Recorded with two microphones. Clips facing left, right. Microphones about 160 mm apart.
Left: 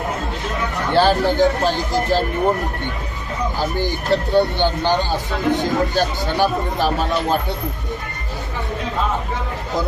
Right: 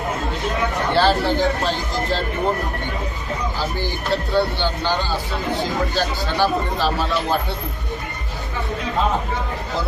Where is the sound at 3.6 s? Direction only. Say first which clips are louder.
Left 3 dB; 20° left (ahead or behind).